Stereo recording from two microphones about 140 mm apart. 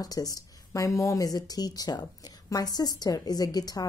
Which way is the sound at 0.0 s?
25° left (ahead or behind).